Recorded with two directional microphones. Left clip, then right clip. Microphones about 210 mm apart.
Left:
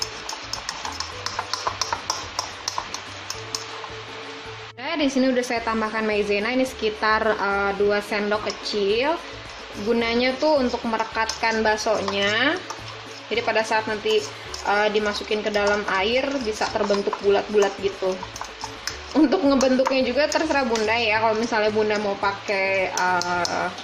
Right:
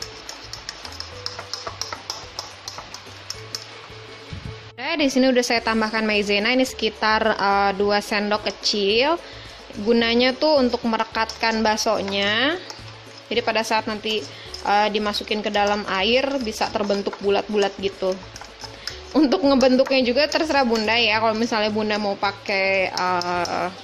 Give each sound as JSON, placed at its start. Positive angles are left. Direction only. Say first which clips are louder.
{"t": 4.8, "sound": "a woman's voice", "louder": "right 3 dB", "side_deg": -35}
{"t": 19.1, "sound": "a woman's voice", "louder": "right 1 dB", "side_deg": -45}